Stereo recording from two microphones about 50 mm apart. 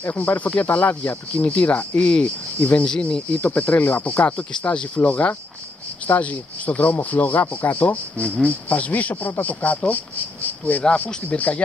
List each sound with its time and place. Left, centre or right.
0.0 s speech: left; by 3.2 s centre
3.3 s speech: left
4.4 s speech: centre
10.6 s speech: left
11.2 s speech: left